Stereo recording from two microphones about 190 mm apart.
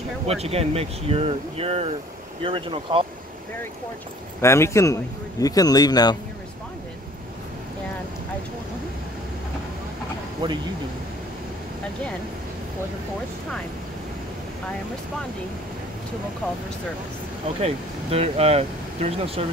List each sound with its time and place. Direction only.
0.3 s speech: 30° right (ahead or behind)
4.4 s a man's voice: 15° left (ahead or behind)
10.4 s speech: 25° right (ahead or behind)
17.6 s speech: 30° right (ahead or behind)